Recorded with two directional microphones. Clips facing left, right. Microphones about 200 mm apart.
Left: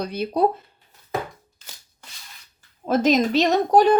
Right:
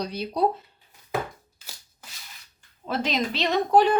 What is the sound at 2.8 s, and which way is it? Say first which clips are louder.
Speech: left 8 dB; 45° left (ahead or behind).